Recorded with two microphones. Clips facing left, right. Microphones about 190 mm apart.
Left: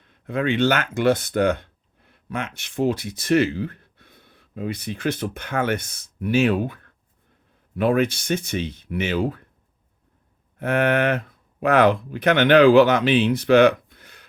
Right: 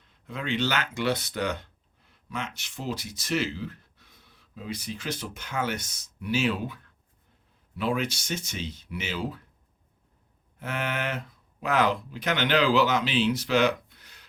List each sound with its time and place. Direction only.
0.0 s speech: 60° left (ahead or behind)
10.6 s speech: 60° left (ahead or behind)